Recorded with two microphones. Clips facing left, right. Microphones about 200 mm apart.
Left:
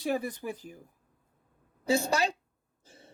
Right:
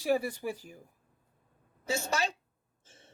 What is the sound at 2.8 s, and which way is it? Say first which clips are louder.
Throat clearing: left 5 dB; 35° left (ahead or behind).